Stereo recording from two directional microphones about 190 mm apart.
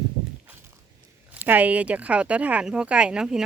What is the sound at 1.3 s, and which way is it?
Speech, 10° right (ahead or behind).